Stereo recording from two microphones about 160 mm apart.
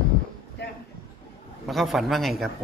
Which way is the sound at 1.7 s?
Centre (ahead or behind).